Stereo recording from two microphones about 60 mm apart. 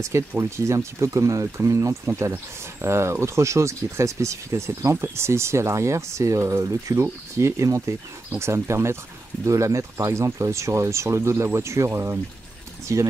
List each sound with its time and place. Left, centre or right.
0.4 s speech: right
8.3 s speech: right
9.4 s speech: right